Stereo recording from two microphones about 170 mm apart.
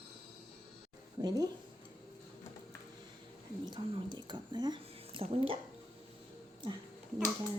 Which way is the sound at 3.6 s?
25° right (ahead or behind).